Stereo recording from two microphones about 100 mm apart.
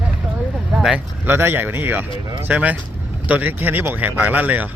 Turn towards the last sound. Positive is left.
turn(degrees=-15)  # may be behind; listen again after turning